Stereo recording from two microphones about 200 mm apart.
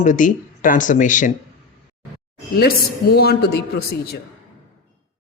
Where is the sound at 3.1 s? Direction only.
50° left (ahead or behind).